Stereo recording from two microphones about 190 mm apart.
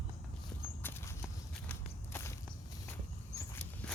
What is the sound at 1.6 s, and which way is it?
Walk, 15° left (ahead or behind).